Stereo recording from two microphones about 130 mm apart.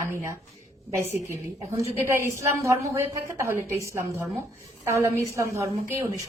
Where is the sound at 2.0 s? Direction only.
20° right (ahead or behind).